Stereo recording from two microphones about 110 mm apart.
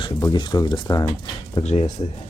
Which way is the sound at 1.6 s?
90° left.